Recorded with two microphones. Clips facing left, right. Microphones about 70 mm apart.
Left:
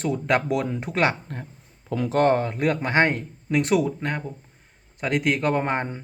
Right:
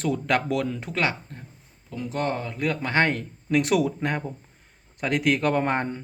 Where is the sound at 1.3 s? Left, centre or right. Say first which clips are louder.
Left 7 dB; left.